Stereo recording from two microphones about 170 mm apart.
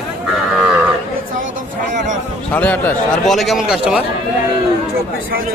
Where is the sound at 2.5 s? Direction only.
10° left (ahead or behind).